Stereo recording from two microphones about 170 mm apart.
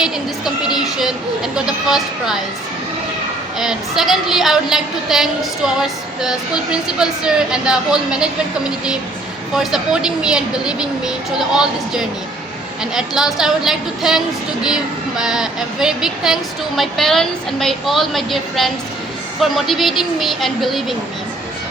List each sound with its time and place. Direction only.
0.0 s a woman's voice: 5° right (ahead or behind)
3.6 s a woman's voice: centre (ahead or behind)
9.7 s a woman's voice: 5° right (ahead or behind)